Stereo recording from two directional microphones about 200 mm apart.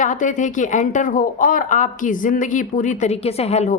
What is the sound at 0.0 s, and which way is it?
Speech, 40° left (ahead or behind).